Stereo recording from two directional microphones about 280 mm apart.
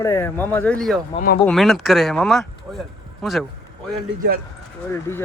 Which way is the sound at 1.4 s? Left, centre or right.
Centre.